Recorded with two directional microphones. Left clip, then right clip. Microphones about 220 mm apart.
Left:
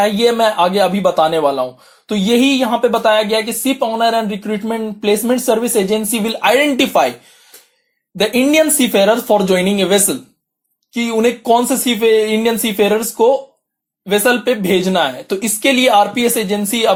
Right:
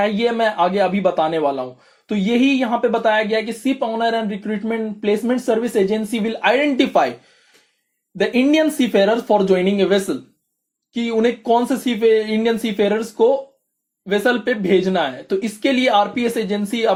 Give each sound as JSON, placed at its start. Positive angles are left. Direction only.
{"t": 0.0, "sound": "speech", "side_deg": 25}
{"t": 8.2, "sound": "speech", "side_deg": 25}